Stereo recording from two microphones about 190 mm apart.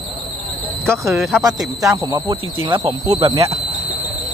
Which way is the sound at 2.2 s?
25° right (ahead or behind).